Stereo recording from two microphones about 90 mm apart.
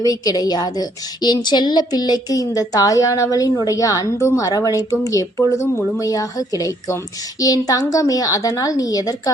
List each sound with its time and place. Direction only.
0.0 s a woman's voice: 45° left (ahead or behind)
5.4 s speech: 30° left (ahead or behind)